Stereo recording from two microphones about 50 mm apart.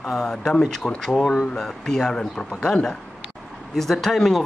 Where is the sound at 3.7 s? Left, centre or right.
Centre.